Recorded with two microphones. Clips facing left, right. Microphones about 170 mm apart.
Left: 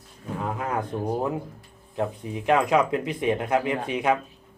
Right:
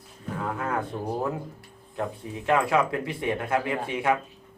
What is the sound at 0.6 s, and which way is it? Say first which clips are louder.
A man's voice: left 2 dB; 20° left (ahead or behind).